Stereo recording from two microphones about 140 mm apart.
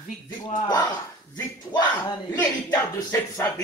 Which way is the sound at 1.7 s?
30° left (ahead or behind).